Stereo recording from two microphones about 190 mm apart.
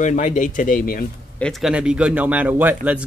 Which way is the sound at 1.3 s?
5° left (ahead or behind).